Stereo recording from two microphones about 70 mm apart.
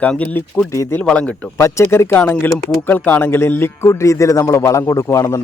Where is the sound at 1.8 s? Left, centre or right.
Left.